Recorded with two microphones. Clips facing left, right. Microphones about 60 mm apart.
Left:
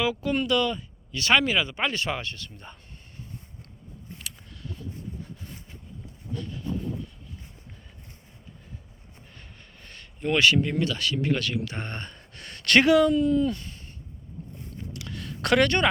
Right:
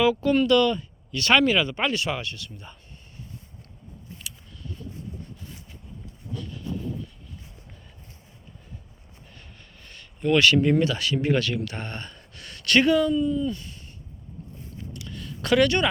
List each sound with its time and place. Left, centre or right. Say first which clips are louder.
0.0 s speech: right 5 dB; centre
1.9 s speech: right 2 dB; left
4.2 s a sound: even; left
10.2 s speech: right 2 dB; left
10.6 s speech: right 5 dB; centre
11.3 s speech: right 4 dB; centre
11.6 s a sound: right 1 dB; left
12.6 s speech: left 1 dB; left
14.9 s a sound: left 1 dB; left